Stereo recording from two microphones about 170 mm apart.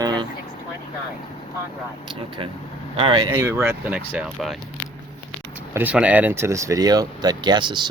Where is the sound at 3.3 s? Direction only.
15° right (ahead or behind).